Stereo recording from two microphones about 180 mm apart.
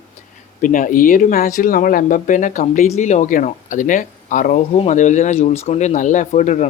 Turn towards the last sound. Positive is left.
turn(degrees=40)  # may be behind; listen again after turning